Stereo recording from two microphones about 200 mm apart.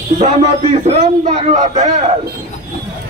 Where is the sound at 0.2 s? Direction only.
35° right (ahead or behind).